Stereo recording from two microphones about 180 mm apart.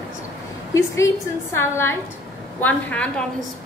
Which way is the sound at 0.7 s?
15° left (ahead or behind).